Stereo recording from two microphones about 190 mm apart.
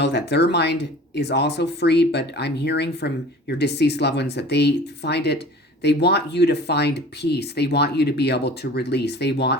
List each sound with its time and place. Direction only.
0.0 s speech: 60° left (ahead or behind)